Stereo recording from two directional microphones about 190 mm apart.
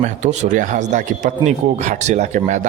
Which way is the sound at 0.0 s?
40° right (ahead or behind).